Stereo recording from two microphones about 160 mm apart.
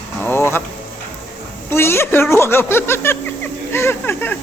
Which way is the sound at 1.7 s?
15° left (ahead or behind).